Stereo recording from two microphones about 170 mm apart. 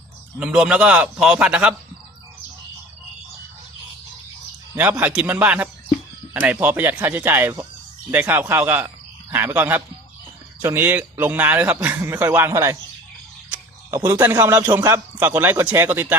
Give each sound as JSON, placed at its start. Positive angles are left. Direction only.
{"t": 0.3, "sound": "a man's voice", "side_deg": -5}
{"t": 4.7, "sound": "speech", "side_deg": -10}
{"t": 13.9, "sound": "speech", "side_deg": -20}